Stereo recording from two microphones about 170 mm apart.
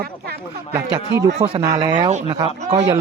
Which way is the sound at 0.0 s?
70° right (ahead or behind).